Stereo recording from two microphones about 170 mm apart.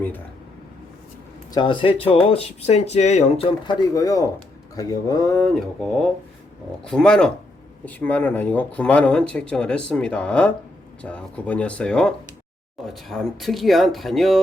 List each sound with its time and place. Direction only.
1.5 s speech: 30° left (ahead or behind)
3.7 s speech: 20° left (ahead or behind); by 14.4 s centre (ahead or behind)